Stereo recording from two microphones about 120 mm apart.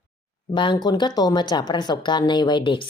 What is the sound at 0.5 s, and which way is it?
Speech, 40° left (ahead or behind).